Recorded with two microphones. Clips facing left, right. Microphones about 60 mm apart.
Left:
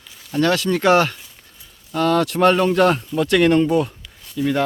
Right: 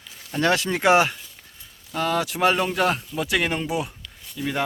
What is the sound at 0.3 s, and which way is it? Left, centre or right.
Speech, centre.